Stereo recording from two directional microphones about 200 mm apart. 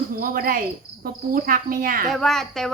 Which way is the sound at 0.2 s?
45° right (ahead or behind).